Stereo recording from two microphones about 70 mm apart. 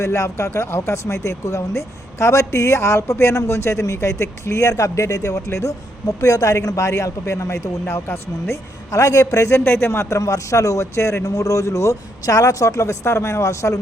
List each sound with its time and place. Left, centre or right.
0.0 s speech: left
9.6 s speech: left
10.2 s speech: left